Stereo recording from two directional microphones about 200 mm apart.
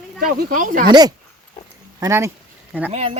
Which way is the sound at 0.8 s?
20° right (ahead or behind).